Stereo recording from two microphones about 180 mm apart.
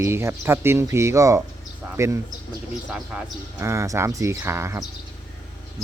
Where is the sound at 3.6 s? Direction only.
15° right (ahead or behind).